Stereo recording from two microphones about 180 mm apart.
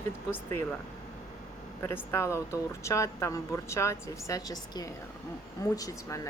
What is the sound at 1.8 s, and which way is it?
Speech, 15° left (ahead or behind).